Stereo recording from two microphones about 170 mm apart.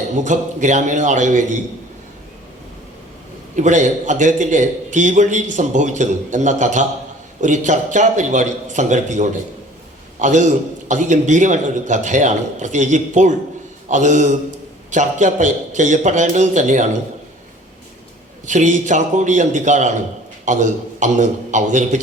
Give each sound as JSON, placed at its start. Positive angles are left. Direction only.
{"t": 0.2, "sound": "a man's voice", "side_deg": -45}
{"t": 3.5, "sound": "a man's voice", "side_deg": -45}
{"t": 18.4, "sound": "a man's voice", "side_deg": -45}